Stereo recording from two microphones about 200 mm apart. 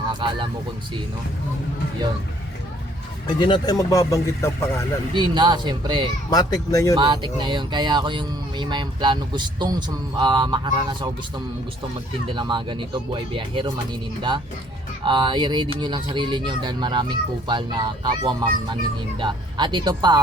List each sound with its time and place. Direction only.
0.1 s speech: 25° right (ahead or behind)
3.4 s speech: 20° left (ahead or behind)
5.1 s speech: 20° right (ahead or behind)
6.3 s speech: 20° left (ahead or behind)
6.9 s speech: 25° right (ahead or behind)
12.3 s speech: 25° right (ahead or behind)